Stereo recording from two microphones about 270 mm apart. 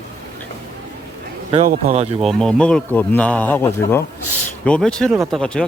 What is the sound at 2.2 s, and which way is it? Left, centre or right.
Speech, centre.